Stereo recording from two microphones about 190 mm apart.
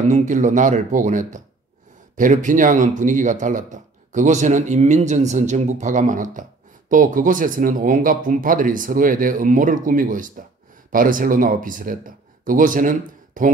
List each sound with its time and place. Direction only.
0.1 s speech: 40° right (ahead or behind)